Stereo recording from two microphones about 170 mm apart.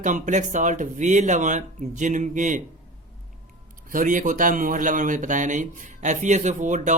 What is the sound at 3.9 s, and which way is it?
Speech, 50° right (ahead or behind).